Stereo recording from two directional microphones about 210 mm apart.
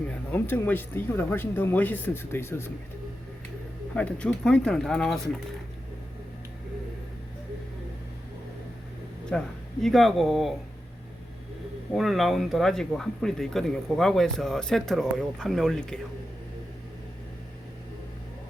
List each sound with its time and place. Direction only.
0.1 s speech: 10° left (ahead or behind)
3.9 s speech: 5° left (ahead or behind)
9.3 s speech: 5° left (ahead or behind)
11.9 s speech: centre (ahead or behind)